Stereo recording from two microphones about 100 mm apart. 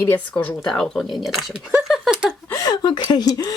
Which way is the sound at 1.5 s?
Centre (ahead or behind).